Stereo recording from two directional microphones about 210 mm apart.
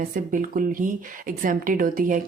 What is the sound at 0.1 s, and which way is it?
Speech, 40° right (ahead or behind).